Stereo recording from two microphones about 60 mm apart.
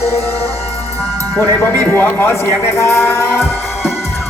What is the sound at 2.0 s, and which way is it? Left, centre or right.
Speech, left.